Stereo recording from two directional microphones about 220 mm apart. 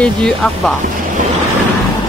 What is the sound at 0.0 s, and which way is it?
Speech, centre (ahead or behind).